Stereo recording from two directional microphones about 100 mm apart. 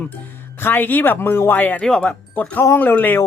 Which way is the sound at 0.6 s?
20° left (ahead or behind).